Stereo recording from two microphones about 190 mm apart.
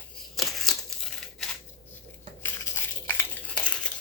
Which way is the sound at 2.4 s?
10° left (ahead or behind).